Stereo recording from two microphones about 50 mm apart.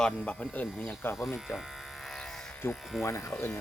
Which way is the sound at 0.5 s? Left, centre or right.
Left.